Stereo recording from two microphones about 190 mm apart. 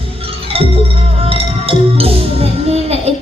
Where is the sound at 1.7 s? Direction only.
30° right (ahead or behind).